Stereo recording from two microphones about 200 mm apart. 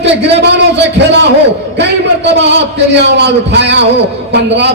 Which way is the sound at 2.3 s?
60° right (ahead or behind).